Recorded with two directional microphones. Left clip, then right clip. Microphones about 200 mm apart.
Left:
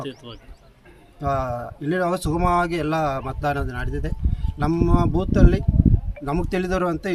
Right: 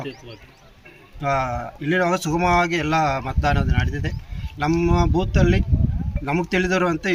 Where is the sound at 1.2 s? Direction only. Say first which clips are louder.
Right 2 dB; 15° left (ahead or behind).